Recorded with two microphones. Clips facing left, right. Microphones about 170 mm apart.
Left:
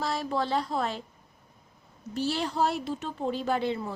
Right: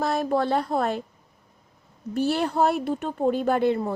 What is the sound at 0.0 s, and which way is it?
A woman's voice, 55° right (ahead or behind).